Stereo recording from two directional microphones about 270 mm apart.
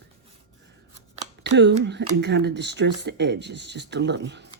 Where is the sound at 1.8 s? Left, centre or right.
Right.